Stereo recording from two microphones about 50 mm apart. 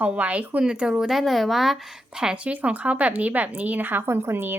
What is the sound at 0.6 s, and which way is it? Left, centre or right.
Speech, centre.